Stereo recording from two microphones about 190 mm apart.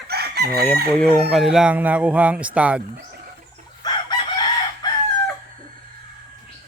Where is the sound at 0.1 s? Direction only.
55° right (ahead or behind).